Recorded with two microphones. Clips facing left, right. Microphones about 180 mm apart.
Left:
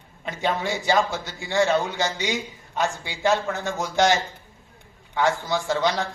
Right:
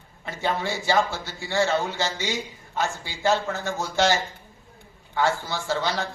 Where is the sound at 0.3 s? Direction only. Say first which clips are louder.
Left 2 dB; 15° left (ahead or behind).